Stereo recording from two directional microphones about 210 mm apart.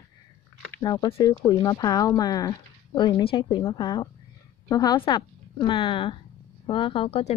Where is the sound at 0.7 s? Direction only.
20° left (ahead or behind).